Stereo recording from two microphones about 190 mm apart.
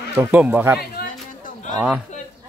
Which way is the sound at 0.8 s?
55° left (ahead or behind).